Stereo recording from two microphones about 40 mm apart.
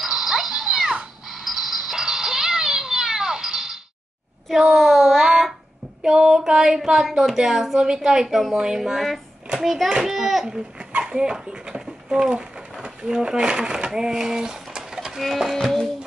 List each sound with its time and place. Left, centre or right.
0.0 s music: centre
4.6 s child singing: centre
6.0 s a sound: centre
7.4 s a woman's voice: centre
8.3 s music: centre
8.5 s a woman's voice: centre
10.4 s a sound: right
10.9 s dog: right
12.1 s a sound: centre
12.8 s speech: right
15.1 s music: centre
15.5 s music: centre